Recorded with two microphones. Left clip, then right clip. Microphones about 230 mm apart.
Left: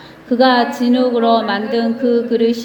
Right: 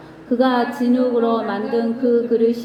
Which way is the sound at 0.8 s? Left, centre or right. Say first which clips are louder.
Left 3 dB; left.